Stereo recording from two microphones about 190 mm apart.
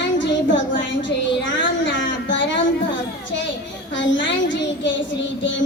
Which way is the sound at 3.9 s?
75° left (ahead or behind).